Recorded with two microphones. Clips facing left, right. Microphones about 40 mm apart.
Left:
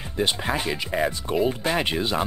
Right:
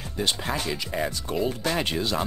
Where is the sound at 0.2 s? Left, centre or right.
Left.